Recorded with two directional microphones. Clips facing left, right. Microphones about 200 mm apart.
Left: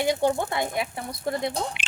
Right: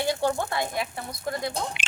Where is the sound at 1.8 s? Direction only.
50° right (ahead or behind).